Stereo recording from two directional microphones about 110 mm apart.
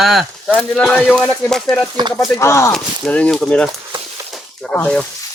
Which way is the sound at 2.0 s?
40° right (ahead or behind).